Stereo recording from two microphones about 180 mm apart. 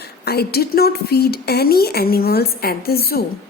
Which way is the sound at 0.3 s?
60° left (ahead or behind).